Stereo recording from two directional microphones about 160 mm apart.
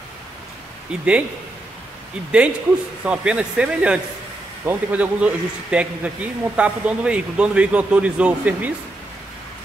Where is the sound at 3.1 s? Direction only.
5° right (ahead or behind).